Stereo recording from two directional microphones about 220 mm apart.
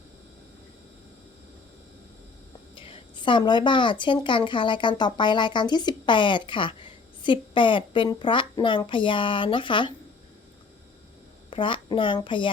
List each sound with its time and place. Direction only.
2.7 s speech: 25° left (ahead or behind)
11.5 s a woman's voice: 25° left (ahead or behind)